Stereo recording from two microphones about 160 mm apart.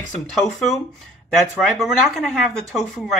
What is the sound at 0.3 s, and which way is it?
Speech, centre (ahead or behind).